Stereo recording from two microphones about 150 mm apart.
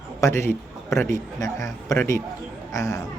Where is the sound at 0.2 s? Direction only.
20° left (ahead or behind).